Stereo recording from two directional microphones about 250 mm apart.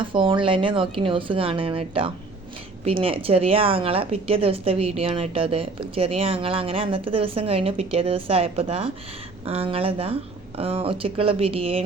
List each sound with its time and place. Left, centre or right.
0.0 s a woman's voice: centre